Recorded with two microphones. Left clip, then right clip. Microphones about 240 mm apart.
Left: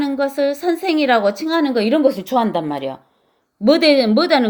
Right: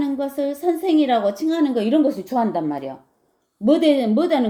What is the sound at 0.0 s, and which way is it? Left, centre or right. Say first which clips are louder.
Speech: left 5 dB; left.